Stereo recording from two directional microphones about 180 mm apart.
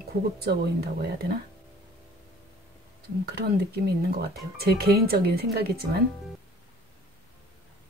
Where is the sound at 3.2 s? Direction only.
60° right (ahead or behind).